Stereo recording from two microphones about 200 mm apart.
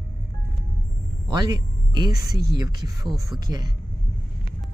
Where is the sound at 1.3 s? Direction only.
20° right (ahead or behind).